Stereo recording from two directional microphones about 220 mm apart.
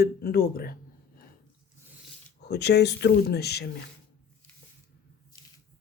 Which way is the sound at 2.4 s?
50° left (ahead or behind).